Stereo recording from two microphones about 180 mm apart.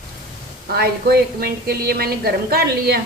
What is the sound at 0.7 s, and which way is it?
Speech, 60° right (ahead or behind).